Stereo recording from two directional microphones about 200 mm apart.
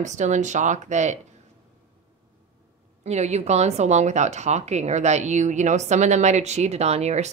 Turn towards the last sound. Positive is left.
turn(degrees=-35)  # may be behind; listen again after turning